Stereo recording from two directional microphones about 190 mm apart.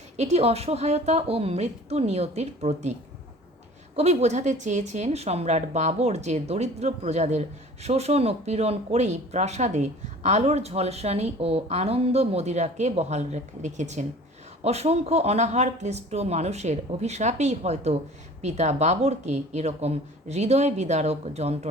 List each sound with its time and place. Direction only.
0.2 s speech: 35° right (ahead or behind)
3.9 s speech: 35° right (ahead or behind)